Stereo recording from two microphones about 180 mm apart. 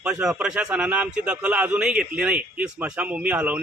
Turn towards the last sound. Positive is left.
turn(degrees=-10)  # may be behind; listen again after turning